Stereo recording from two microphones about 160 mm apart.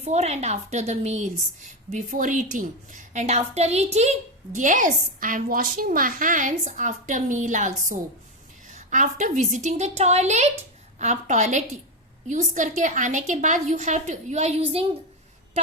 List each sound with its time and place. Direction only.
0.0 s a woman's voice: 45° right (ahead or behind)